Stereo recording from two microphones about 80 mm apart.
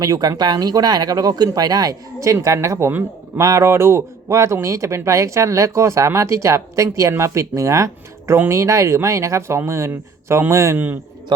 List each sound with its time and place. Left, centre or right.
0.0 s speech: right
11.3 s a man's voice: right